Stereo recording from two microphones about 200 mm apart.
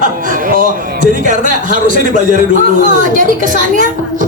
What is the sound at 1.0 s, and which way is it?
Music, 40° right (ahead or behind).